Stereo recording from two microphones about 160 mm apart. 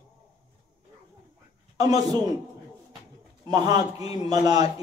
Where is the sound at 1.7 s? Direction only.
20° right (ahead or behind).